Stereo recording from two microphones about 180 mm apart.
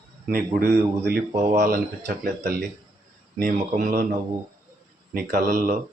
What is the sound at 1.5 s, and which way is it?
Speech, 55° right (ahead or behind).